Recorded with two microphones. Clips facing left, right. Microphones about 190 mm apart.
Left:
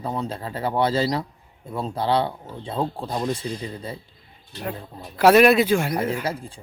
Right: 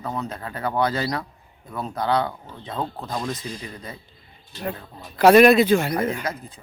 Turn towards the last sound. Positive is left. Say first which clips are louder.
# right 2 dB
turn(degrees=10)  # may be behind; listen again after turning